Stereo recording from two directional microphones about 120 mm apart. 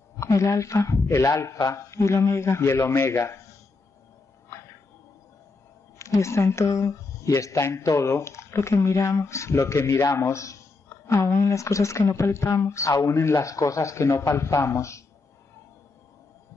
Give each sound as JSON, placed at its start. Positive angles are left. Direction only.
{"t": 0.2, "sound": "speech", "side_deg": 25}
{"t": 4.5, "sound": "a sound", "side_deg": 25}
{"t": 5.9, "sound": "speech", "side_deg": 25}